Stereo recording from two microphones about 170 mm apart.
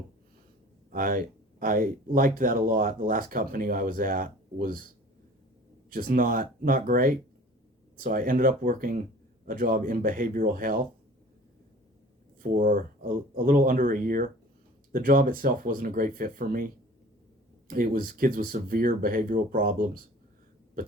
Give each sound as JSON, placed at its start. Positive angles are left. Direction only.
{"t": 0.9, "sound": "speech", "side_deg": -55}
{"t": 5.9, "sound": "speech", "side_deg": -55}
{"t": 12.4, "sound": "speech", "side_deg": -55}